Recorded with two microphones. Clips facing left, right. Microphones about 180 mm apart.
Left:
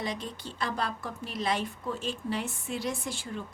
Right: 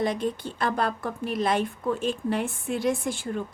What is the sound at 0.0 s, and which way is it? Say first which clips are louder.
Speech: right 9 dB; 55° right (ahead or behind).